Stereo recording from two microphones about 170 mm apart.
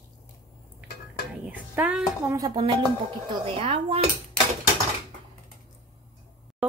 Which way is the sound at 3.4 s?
35° right (ahead or behind).